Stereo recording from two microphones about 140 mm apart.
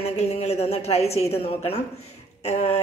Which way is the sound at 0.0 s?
50° left (ahead or behind).